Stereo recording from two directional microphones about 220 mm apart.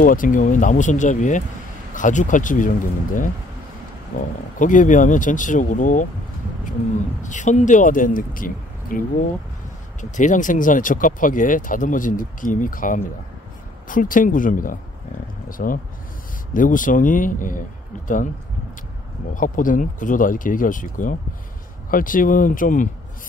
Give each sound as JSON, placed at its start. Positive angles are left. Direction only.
{"t": 0.0, "sound": "speech", "side_deg": 40}
{"t": 4.6, "sound": "speech", "side_deg": 35}
{"t": 7.2, "sound": "speech", "side_deg": 35}
{"t": 19.3, "sound": "speech", "side_deg": 35}